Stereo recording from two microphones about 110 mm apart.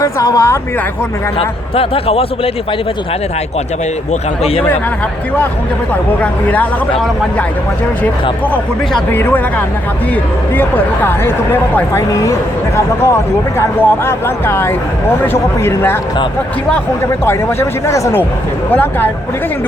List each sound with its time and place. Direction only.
0.0 s speech: 30° left (ahead or behind)
1.4 s a man's voice: 60° left (ahead or behind)
9.1 s speech: 15° left (ahead or behind)
17.2 s speech: 25° left (ahead or behind)